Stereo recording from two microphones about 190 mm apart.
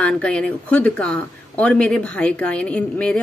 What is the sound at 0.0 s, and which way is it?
Speech, 5° left (ahead or behind).